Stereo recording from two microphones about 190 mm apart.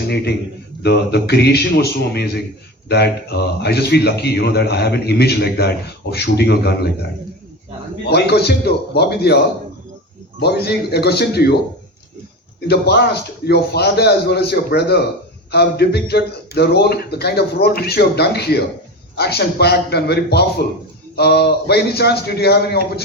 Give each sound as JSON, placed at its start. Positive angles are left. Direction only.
{"t": 0.8, "sound": "a man's voice", "side_deg": 60}
{"t": 8.0, "sound": "a man's voice", "side_deg": 60}
{"t": 10.4, "sound": "a man's voice", "side_deg": 60}
{"t": 12.6, "sound": "a man's voice", "side_deg": 60}